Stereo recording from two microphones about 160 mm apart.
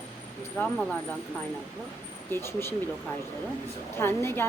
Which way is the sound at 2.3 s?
15° left (ahead or behind).